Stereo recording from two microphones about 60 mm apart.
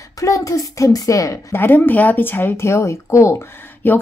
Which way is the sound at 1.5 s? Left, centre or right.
Left.